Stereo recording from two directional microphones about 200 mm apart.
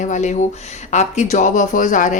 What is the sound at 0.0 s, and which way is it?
Speech, 35° left (ahead or behind).